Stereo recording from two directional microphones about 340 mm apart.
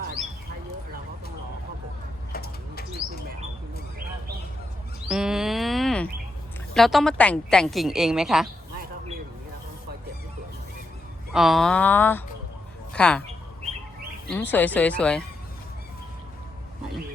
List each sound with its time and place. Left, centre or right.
2.3 s bird flight: left
5.0 s a sound: centre
6.7 s a woman's voice: centre
11.3 s a woman's voice: centre
14.3 s a woman's voice: centre